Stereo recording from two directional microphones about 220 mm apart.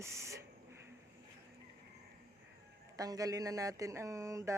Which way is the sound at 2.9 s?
15° right (ahead or behind).